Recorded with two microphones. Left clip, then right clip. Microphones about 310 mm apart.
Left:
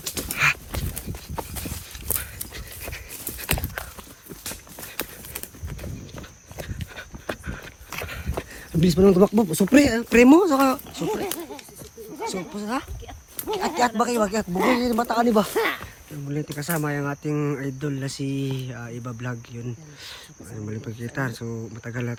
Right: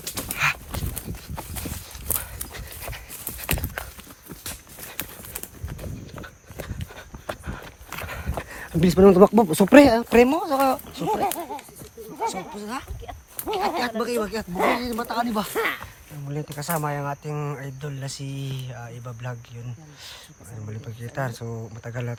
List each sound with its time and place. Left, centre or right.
0.3 s livestock: centre
1.9 s dog: centre
4.9 s clip-clop: centre
6.6 s dog: centre
8.0 s a sound: centre
9.8 s speech: centre
11.3 s a sound: right
12.3 s speech: centre
14.5 s speech: centre
14.8 s speech: centre
16.3 s speech: centre
20.7 s speech: centre